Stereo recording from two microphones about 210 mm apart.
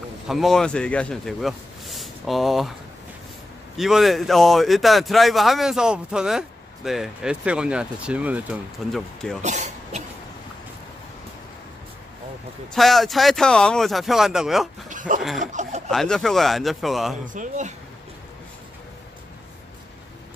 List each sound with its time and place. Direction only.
0.3 s speech: centre (ahead or behind)
3.7 s speech: centre (ahead or behind)
9.4 s speech: 35° right (ahead or behind)
12.7 s speech: centre (ahead or behind)
14.9 s a sound: 40° right (ahead or behind)
15.4 s speech: 35° right (ahead or behind)
15.9 s speech: centre (ahead or behind)
17.3 s speech: 35° right (ahead or behind)